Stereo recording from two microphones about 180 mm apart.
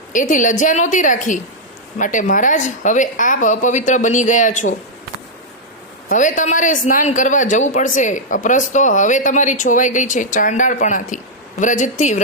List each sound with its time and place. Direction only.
0.1 s a man's voice: 45° left (ahead or behind)
6.1 s a man's voice: 45° left (ahead or behind)